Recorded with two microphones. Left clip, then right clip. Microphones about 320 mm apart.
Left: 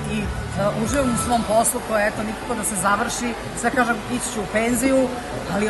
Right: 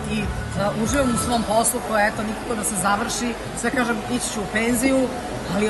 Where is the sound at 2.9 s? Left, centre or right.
Centre.